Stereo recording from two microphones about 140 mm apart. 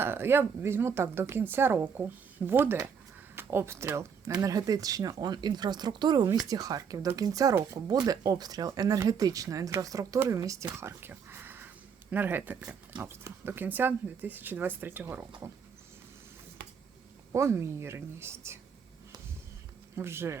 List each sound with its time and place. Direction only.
0.0 s speech: 15° right (ahead or behind)
17.3 s speech: 20° right (ahead or behind)
20.0 s speech: 20° right (ahead or behind)